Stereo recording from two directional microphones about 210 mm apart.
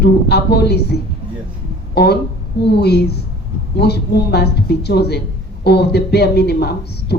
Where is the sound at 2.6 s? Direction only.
50° left (ahead or behind).